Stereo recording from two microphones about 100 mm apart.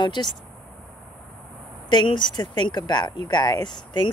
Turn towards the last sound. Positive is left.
turn(degrees=50)  # may be behind; listen again after turning